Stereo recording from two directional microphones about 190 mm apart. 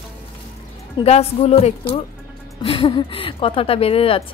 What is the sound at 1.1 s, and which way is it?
A woman's voice, 30° left (ahead or behind).